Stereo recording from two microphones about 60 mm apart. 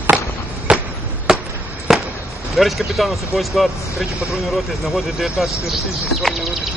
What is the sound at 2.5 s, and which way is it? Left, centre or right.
Speech, centre.